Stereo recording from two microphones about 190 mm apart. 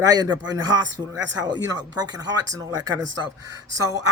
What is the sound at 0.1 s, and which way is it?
Speech, 20° right (ahead or behind).